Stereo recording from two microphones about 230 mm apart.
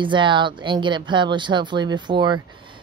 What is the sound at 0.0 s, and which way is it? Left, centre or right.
Speech, right.